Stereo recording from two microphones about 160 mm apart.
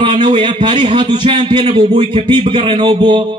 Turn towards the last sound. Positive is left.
turn(degrees=-30)  # may be behind; listen again after turning